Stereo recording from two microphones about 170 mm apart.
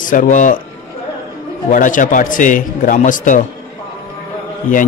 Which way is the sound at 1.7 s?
50° left (ahead or behind).